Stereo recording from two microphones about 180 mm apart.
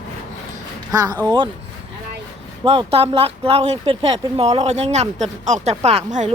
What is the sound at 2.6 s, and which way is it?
Speech, 30° right (ahead or behind).